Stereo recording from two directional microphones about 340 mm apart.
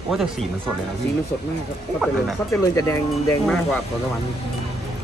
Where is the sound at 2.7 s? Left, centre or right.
Centre.